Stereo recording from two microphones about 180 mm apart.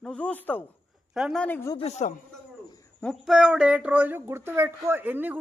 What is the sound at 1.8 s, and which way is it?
Speech, 35° left (ahead or behind).